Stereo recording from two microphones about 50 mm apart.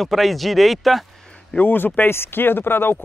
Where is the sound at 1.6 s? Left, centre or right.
Left.